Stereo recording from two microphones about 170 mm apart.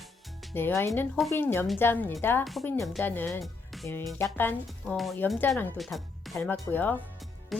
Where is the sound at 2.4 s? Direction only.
Centre (ahead or behind).